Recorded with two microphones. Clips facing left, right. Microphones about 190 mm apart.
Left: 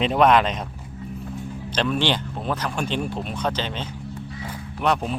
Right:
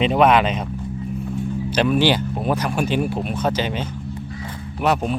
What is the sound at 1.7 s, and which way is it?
Speech, 10° right (ahead or behind).